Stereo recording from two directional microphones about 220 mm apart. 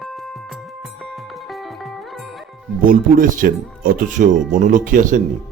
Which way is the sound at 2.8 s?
40° right (ahead or behind).